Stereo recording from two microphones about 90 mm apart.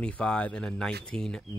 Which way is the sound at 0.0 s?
10° left (ahead or behind).